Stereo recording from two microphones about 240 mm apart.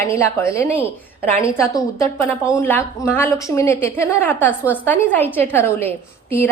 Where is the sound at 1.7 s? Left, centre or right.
Centre.